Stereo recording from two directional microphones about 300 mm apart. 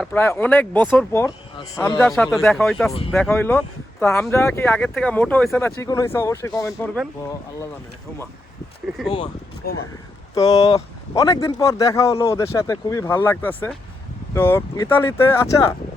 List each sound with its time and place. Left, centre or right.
0.0 s speech: centre
2.0 s speech: centre
9.6 s speech: left
10.3 s speech: centre